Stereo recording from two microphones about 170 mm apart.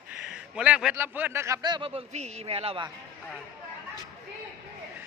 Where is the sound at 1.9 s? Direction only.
40° right (ahead or behind).